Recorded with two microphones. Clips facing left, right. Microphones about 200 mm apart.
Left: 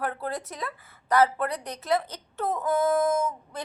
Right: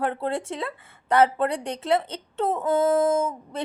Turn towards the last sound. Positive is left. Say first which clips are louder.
# right 3 dB
turn(degrees=-25)  # may be behind; listen again after turning